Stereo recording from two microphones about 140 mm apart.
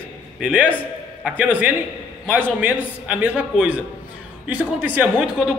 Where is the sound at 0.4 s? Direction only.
10° right (ahead or behind).